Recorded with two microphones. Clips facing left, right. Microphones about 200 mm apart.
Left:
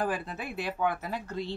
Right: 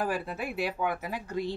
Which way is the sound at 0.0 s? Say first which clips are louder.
Right 1 dB; 10° right (ahead or behind).